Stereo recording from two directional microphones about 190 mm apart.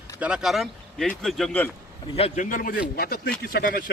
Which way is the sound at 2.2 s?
35° left (ahead or behind).